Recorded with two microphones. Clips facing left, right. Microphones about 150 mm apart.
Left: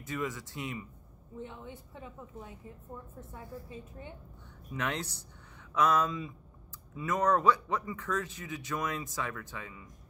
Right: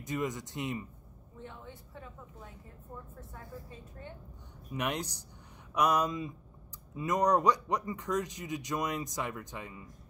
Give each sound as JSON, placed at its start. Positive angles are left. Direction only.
{"t": 0.0, "sound": "speech", "side_deg": -20}
{"t": 1.4, "sound": "speech", "side_deg": 15}
{"t": 4.7, "sound": "speech", "side_deg": -15}